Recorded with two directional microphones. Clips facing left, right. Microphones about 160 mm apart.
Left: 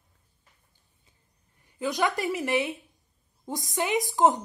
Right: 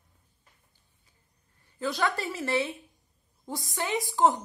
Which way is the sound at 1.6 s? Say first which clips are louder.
Left 2 dB; 15° left (ahead or behind).